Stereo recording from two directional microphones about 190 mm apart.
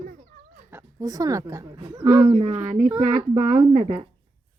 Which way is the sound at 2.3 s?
35° right (ahead or behind).